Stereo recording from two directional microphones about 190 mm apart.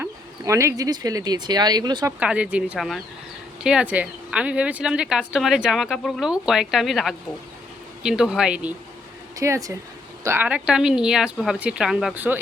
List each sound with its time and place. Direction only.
0.0 s speech: 15° right (ahead or behind)
2.1 s speech: 5° right (ahead or behind)
9.3 s speech: 15° right (ahead or behind)